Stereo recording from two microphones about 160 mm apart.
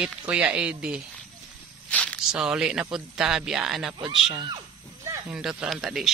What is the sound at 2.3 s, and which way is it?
Speech, 5° right (ahead or behind).